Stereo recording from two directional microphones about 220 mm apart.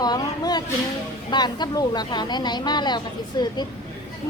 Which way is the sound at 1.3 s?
20° left (ahead or behind).